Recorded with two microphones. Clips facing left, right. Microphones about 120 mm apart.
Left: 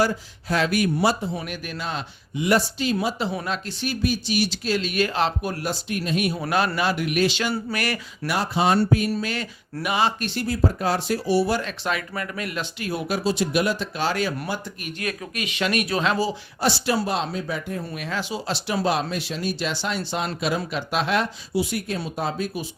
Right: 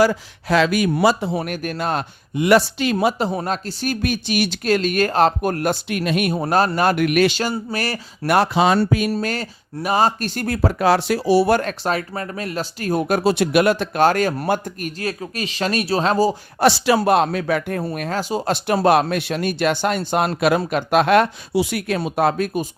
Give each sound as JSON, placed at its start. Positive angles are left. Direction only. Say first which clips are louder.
{"t": 0.0, "sound": "speech", "louder": "right 6 dB", "side_deg": -90}
{"t": 2.5, "sound": "speech", "louder": "right 5 dB", "side_deg": -75}
{"t": 3.2, "sound": "speech", "louder": "right 5 dB", "side_deg": -45}
{"t": 4.0, "sound": "speech", "louder": "right 1 dB", "side_deg": -60}
{"t": 6.7, "sound": "speech", "louder": "right 6 dB", "side_deg": -55}
{"t": 7.7, "sound": "speech", "louder": "right 2 dB", "side_deg": -35}
{"t": 8.3, "sound": "speech", "louder": "right 6 dB", "side_deg": -80}
{"t": 9.1, "sound": "speech", "louder": "right 4 dB", "side_deg": -40}
{"t": 11.5, "sound": "speech", "louder": "right 6 dB", "side_deg": -45}
{"t": 16.6, "sound": "speech", "louder": "right 7 dB", "side_deg": -90}
{"t": 17.0, "sound": "speech", "louder": "right 9 dB", "side_deg": -55}
{"t": 17.9, "sound": "speech", "louder": "right 5 dB", "side_deg": -45}